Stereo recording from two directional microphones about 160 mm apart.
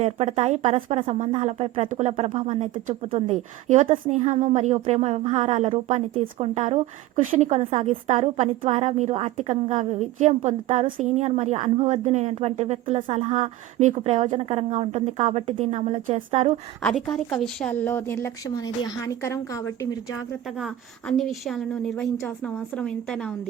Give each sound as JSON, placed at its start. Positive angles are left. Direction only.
{"t": 0.0, "sound": "a woman's voice", "side_deg": -40}
{"t": 16.9, "sound": "a woman's voice", "side_deg": 0}
{"t": 20.6, "sound": "a woman's voice", "side_deg": 0}